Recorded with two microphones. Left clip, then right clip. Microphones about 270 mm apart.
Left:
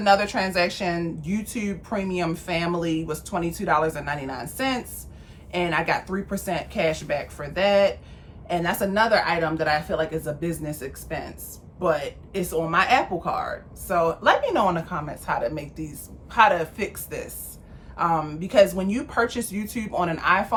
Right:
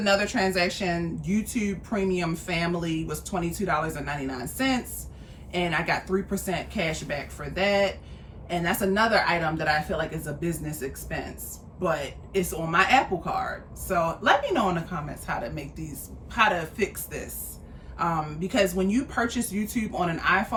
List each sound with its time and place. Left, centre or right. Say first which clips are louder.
0.0 s speech: left 4 dB; centre